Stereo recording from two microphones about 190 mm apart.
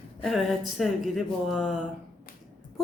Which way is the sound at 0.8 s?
Centre (ahead or behind).